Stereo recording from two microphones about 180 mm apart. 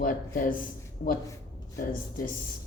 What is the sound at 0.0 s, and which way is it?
Speech, 50° left (ahead or behind).